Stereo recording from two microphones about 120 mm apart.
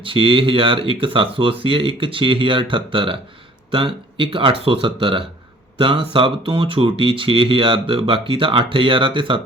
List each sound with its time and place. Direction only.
0.0 s speech: 45° right (ahead or behind)